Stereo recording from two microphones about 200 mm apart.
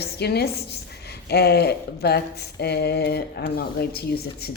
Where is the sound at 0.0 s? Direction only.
55° left (ahead or behind).